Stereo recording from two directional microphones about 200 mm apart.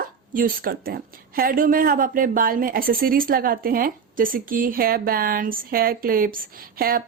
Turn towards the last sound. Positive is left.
turn(degrees=-45)  # may be behind; listen again after turning